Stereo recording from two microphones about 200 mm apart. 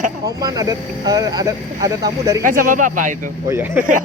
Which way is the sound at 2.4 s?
45° right (ahead or behind).